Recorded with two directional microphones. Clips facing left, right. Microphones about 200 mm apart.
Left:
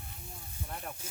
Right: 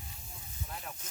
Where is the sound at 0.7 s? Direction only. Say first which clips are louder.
Left 3 dB; 50° left (ahead or behind).